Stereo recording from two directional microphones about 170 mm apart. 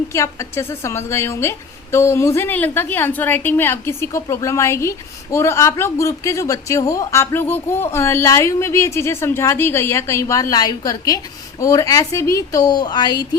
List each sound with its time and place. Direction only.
0.1 s a woman's voice: 15° left (ahead or behind)